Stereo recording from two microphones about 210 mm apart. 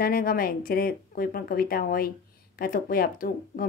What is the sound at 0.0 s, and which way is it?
Speech, 45° left (ahead or behind).